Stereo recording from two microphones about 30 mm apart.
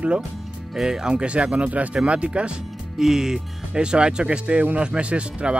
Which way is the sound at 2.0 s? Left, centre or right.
Right.